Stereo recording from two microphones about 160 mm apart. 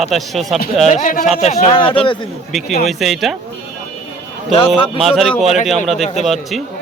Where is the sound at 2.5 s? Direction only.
Centre (ahead or behind).